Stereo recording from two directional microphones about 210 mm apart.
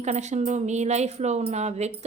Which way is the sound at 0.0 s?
35° right (ahead or behind).